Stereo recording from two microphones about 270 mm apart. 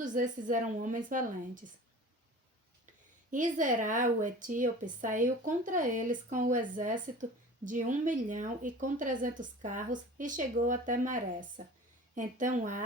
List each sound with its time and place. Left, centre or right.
0.0 s a woman's voice: right
3.3 s a woman's voice: right